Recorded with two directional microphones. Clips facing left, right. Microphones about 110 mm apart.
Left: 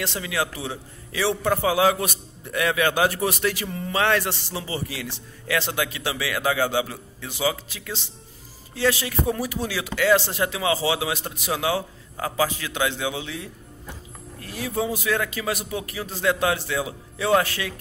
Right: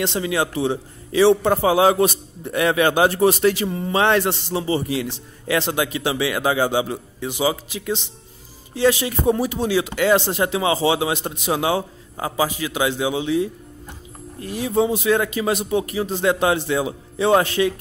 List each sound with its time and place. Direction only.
0.0 s a man's voice: 25° right (ahead or behind)